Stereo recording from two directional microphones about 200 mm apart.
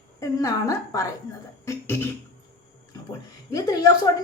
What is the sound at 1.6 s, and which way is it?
Beatboxing, 10° left (ahead or behind).